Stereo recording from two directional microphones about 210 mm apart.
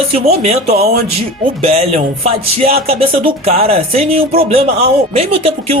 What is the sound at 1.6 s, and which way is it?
Speech, 30° right (ahead or behind).